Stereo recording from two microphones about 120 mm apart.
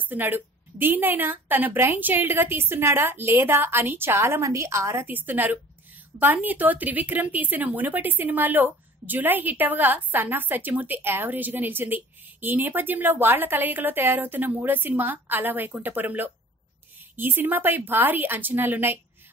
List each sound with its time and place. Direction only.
0.0 s speech: 15° right (ahead or behind)